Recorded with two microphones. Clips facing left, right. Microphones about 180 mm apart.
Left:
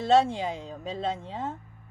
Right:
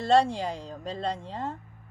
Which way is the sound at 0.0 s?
Centre (ahead or behind).